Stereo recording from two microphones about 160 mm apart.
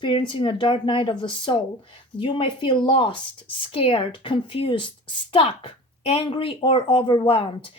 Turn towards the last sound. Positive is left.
turn(degrees=35)  # may be behind; listen again after turning